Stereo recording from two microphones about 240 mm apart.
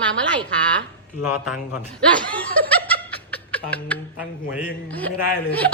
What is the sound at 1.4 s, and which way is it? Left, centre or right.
Speech, centre.